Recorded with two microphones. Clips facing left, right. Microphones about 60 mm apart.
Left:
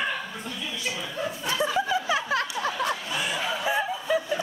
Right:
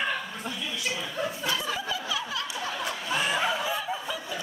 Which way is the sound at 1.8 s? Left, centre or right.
Left.